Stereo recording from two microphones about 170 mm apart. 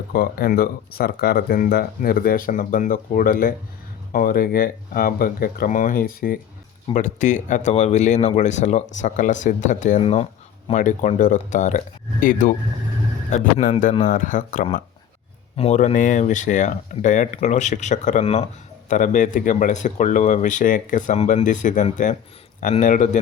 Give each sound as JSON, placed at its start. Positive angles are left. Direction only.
{"t": 0.1, "sound": "speech", "side_deg": 60}
{"t": 10.0, "sound": "speech", "side_deg": 35}
{"t": 18.9, "sound": "speech", "side_deg": 50}